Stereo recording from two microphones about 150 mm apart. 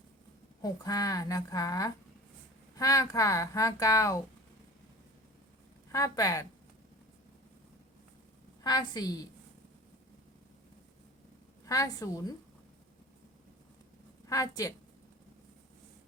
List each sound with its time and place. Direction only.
0.6 s speech: 25° left (ahead or behind)
5.9 s speech: 20° left (ahead or behind)
8.6 s speech: 30° left (ahead or behind)
11.6 s speech: 20° left (ahead or behind)
14.3 s a woman's voice: 20° left (ahead or behind)